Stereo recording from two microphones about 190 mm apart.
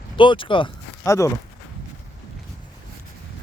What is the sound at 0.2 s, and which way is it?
Speech, 25° left (ahead or behind).